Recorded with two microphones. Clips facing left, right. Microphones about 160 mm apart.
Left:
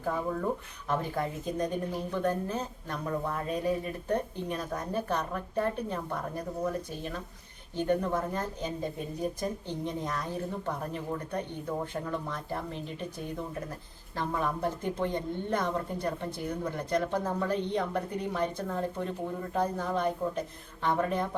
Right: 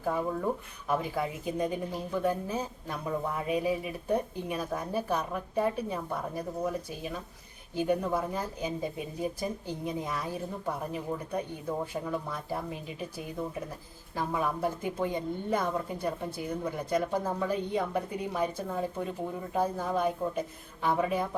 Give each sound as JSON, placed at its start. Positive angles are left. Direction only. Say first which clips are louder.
{"t": 0.0, "sound": "speech", "louder": "right 1 dB", "side_deg": -5}